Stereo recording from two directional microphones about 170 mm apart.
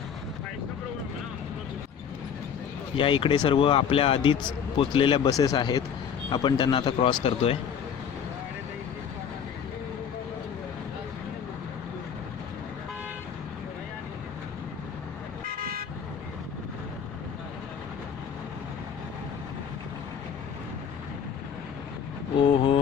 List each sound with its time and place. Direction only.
2.9 s speech: 30° left (ahead or behind)
15.4 s vehicle: 60° right (ahead or behind)
22.4 s vehicle: 30° left (ahead or behind)